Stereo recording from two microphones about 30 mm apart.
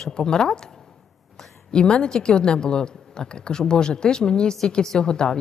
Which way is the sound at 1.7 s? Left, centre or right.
Left.